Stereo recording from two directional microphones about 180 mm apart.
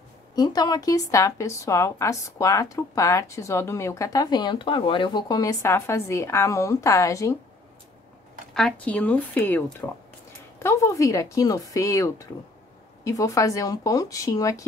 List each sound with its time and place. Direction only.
0.4 s a woman's voice: 20° left (ahead or behind)
8.5 s a woman's voice: 5° left (ahead or behind)